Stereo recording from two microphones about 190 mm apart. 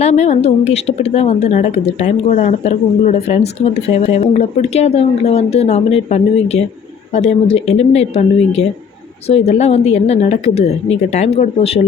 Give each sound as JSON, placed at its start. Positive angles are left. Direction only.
{"t": 0.0, "sound": "a woman's voice", "side_deg": 35}